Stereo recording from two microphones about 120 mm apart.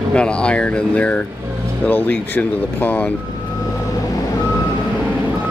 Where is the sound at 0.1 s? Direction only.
10° left (ahead or behind).